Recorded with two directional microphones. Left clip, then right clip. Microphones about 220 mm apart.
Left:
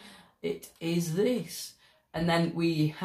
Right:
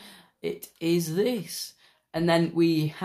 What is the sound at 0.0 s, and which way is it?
Speech, 50° right (ahead or behind).